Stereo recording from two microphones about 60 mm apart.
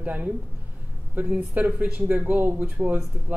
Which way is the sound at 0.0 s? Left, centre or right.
Right.